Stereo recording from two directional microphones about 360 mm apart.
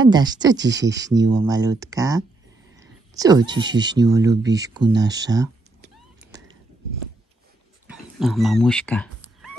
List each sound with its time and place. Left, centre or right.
0.0 s speech: centre
0.6 s speech: right
1.4 s speech: centre
2.7 s a sound: centre
3.6 s speech: centre
7.8 s a sound: centre